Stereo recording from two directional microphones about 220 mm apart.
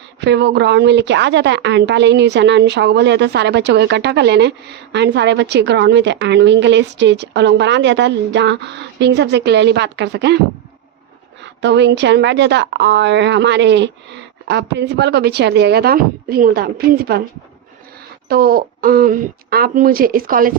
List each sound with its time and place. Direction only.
0.2 s a woman's voice: 50° right (ahead or behind)
11.6 s a woman's voice: 55° right (ahead or behind)
18.3 s speech: 40° right (ahead or behind)